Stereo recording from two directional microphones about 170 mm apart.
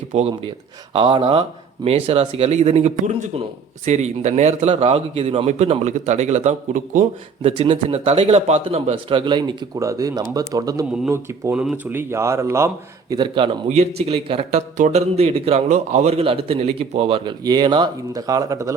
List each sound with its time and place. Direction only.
0.1 s speech: 35° right (ahead or behind)
7.4 s a man's voice: 35° right (ahead or behind); by 11.5 s 15° right (ahead or behind)
11.5 s a man's voice: 5° right (ahead or behind); by 18.7 s 20° right (ahead or behind)